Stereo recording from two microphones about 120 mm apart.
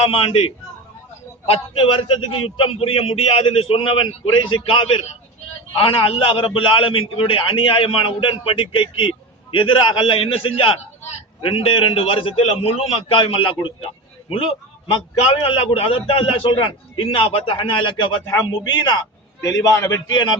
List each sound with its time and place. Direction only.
0.0 s a man's voice: 55° left (ahead or behind)
19.4 s a man's voice: 30° left (ahead or behind)